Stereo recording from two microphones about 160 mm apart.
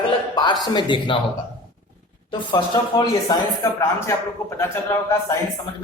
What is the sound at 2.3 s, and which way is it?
Speech, 30° left (ahead or behind).